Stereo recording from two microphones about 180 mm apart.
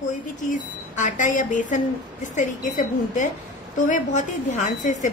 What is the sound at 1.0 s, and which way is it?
Speech, 45° left (ahead or behind).